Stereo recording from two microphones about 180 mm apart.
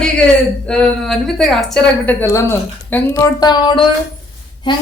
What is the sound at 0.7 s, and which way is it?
Speech, 5° left (ahead or behind).